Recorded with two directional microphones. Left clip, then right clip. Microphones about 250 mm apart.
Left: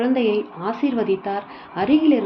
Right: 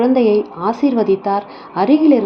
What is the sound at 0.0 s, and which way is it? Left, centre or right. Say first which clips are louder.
A woman's voice: right 7 dB; centre.